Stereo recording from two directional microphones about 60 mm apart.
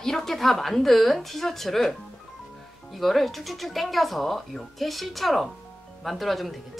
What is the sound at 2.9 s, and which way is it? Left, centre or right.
A woman's voice, centre.